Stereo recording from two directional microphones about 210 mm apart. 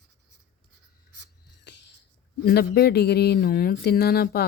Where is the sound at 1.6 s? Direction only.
55° left (ahead or behind).